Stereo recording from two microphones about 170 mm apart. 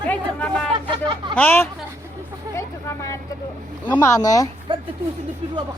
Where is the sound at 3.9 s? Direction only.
15° left (ahead or behind).